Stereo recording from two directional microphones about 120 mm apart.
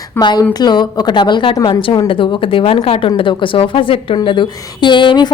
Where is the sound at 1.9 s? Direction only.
45° left (ahead or behind).